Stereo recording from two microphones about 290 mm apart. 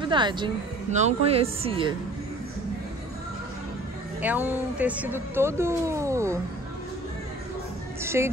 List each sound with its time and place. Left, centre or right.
0.0 s speech: centre
4.2 s speech: centre
8.0 s speech: centre